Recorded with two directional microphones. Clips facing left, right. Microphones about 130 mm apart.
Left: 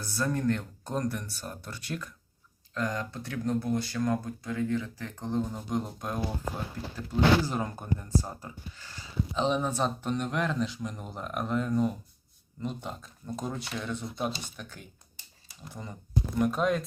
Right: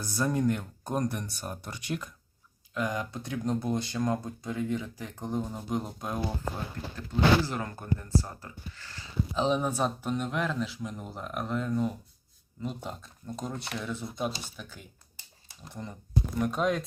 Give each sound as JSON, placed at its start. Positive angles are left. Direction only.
{"t": 0.0, "sound": "speech", "side_deg": -15}
{"t": 7.4, "sound": "speech", "side_deg": 15}
{"t": 9.3, "sound": "speech", "side_deg": -5}